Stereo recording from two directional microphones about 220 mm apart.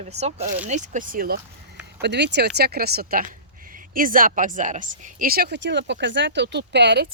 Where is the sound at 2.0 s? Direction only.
50° right (ahead or behind).